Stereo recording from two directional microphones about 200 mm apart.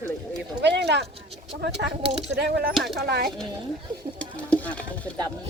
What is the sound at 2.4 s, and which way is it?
Speech, 55° right (ahead or behind).